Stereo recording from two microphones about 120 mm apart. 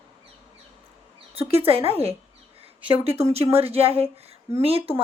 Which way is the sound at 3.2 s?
60° right (ahead or behind).